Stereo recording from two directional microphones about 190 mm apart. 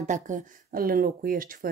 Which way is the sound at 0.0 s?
40° right (ahead or behind).